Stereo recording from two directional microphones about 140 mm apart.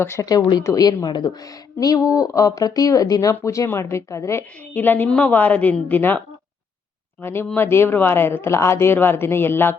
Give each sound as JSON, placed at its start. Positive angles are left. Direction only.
{"t": 0.0, "sound": "a woman's voice", "side_deg": 20}